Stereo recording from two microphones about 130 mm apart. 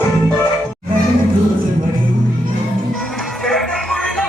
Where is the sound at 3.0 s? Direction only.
Centre (ahead or behind).